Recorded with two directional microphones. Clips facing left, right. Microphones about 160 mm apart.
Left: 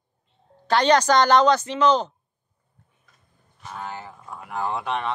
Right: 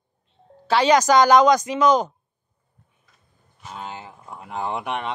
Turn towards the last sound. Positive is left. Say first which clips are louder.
# left 1 dB
turn(degrees=-15)  # may be behind; listen again after turning